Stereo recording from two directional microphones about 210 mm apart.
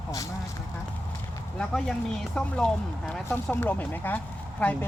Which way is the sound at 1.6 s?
5° left (ahead or behind).